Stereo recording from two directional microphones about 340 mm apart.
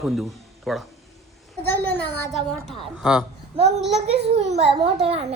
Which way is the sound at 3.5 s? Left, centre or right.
Centre.